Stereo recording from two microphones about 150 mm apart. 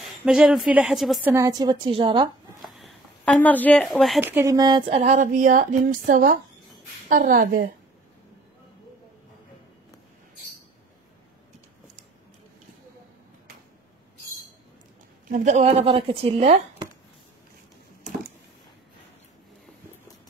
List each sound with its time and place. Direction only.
0.0 s a woman's voice: 5° right (ahead or behind)
1.2 s a woman's voice: 20° right (ahead or behind)
2.6 s a sound: centre (ahead or behind)
3.4 s a woman's voice: 10° left (ahead or behind)
4.2 s a woman's voice: 15° right (ahead or behind); by 7.7 s 80° right
15.3 s speech: 50° right (ahead or behind)